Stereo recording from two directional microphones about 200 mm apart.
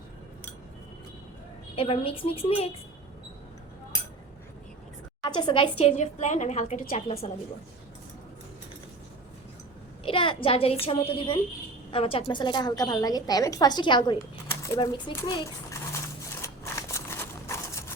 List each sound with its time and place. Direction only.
1.7 s a woman's voice: 30° left (ahead or behind)
5.2 s a woman's voice: 20° left (ahead or behind); by 7.0 s 40° left (ahead or behind)
10.0 s a woman's voice: 25° left (ahead or behind)
14.5 s a sound: 15° left (ahead or behind)
14.8 s a child's voice: 20° left (ahead or behind)
16.4 s a sound: 15° left (ahead or behind)